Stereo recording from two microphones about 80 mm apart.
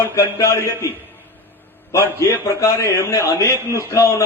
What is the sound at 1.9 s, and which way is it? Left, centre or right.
A man's voice, left.